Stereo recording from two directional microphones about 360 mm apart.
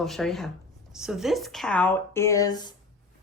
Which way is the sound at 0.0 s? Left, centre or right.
Centre.